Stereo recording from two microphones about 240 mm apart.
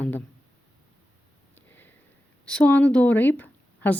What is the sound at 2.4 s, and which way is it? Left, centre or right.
Speech, centre.